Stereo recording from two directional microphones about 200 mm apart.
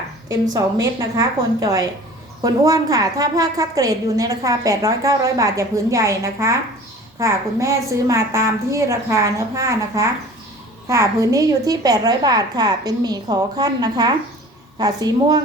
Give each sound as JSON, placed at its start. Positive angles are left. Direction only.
{"t": 0.5, "sound": "a woman's voice", "side_deg": -15}